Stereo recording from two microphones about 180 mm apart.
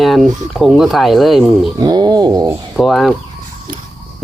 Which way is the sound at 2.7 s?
Centre (ahead or behind).